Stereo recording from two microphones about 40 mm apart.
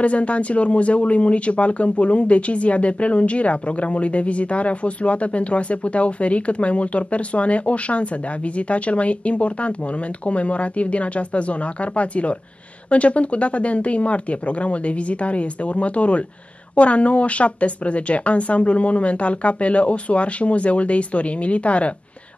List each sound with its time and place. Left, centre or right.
0.0 s speech: left